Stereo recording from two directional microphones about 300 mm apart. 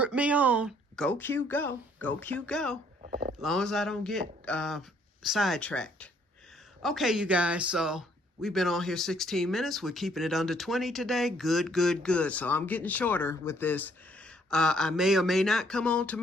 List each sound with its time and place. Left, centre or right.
0.0 s speech: centre
3.0 s a sound: right
3.4 s speech: centre